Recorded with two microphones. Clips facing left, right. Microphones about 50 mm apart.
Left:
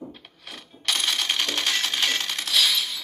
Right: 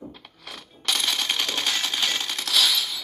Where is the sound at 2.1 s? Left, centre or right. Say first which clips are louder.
Left 1 dB; left.